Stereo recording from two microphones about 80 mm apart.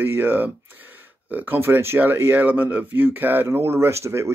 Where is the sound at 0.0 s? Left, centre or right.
Right.